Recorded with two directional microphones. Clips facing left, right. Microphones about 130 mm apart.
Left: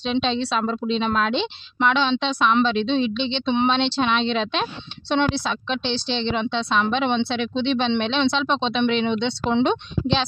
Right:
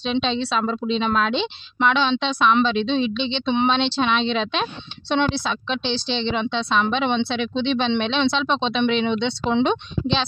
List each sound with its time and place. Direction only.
0.1 s speech: 50° left (ahead or behind); by 9.7 s 35° left (ahead or behind)